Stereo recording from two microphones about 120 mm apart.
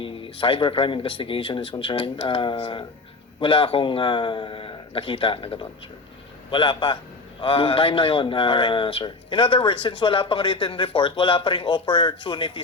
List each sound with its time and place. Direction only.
0.0 s a man's voice: 45° left (ahead or behind)